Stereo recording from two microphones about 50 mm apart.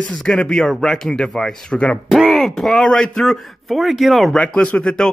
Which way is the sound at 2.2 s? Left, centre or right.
Centre.